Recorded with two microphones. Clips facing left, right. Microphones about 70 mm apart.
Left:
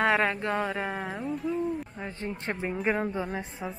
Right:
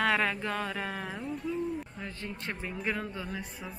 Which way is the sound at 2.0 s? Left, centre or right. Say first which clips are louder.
Left 4 dB; left.